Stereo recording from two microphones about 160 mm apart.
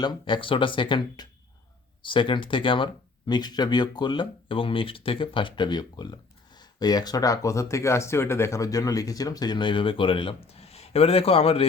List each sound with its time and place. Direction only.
0.0 s speech: 30° left (ahead or behind)